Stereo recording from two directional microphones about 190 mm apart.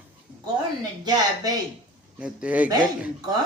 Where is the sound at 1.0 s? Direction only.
20° right (ahead or behind).